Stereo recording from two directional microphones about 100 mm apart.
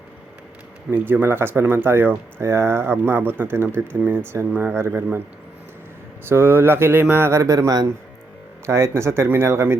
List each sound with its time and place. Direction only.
0.9 s speech: 20° right (ahead or behind)
6.2 s speech: 20° right (ahead or behind)